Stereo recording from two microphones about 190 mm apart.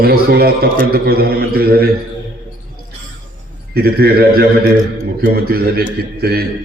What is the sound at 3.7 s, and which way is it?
A man's voice, 55° right (ahead or behind).